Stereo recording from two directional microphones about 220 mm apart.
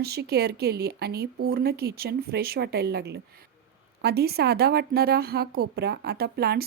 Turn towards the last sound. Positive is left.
turn(degrees=-45)  # may be behind; listen again after turning